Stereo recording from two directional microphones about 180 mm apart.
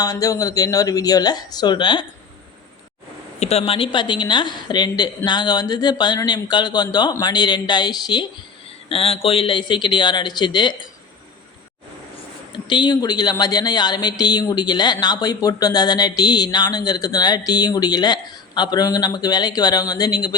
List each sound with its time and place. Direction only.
0.0 s speech: 20° left (ahead or behind)
3.4 s speech: 35° left (ahead or behind)
12.6 s speech: 25° left (ahead or behind)